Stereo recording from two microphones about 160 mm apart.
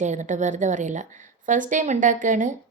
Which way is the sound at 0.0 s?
50° right (ahead or behind).